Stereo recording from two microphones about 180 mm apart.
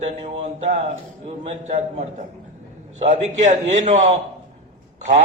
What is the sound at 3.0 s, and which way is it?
A man's voice, 40° right (ahead or behind).